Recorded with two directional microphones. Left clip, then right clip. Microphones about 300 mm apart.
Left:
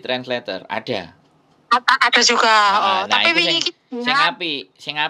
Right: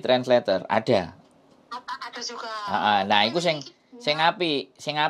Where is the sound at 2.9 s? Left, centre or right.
Right.